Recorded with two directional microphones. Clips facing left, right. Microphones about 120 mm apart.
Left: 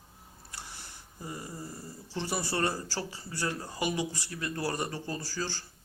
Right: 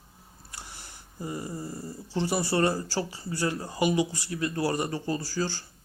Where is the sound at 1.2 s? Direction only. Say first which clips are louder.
Right 6 dB; 15° right (ahead or behind).